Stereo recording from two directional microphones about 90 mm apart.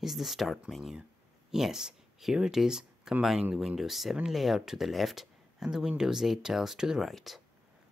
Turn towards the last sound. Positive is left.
turn(degrees=0)  # may be behind; listen again after turning